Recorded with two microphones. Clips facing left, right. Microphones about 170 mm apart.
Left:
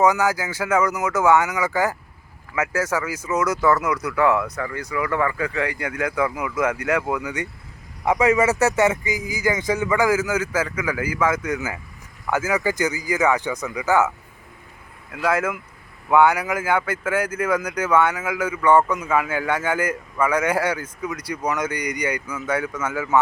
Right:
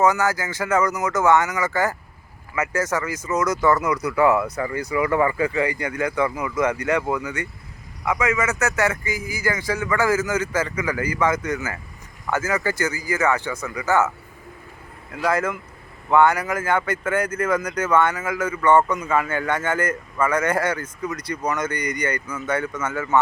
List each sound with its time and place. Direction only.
0.0 s a man's voice: 10° left (ahead or behind); by 5.5 s 15° right (ahead or behind)
5.5 s speech: centre (ahead or behind)
8.0 s a man's voice: 35° left (ahead or behind); by 14.1 s 10° left (ahead or behind)
15.1 s a man's voice: 5° left (ahead or behind)